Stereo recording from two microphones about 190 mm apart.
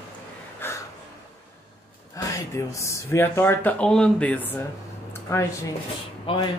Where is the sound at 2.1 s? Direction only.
15° left (ahead or behind).